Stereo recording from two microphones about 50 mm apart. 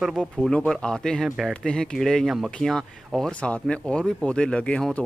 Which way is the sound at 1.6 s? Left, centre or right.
Centre.